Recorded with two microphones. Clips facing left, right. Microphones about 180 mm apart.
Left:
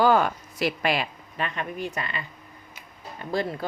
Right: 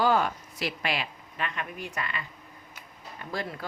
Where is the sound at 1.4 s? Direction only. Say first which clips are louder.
Left 4 dB; 30° left (ahead or behind).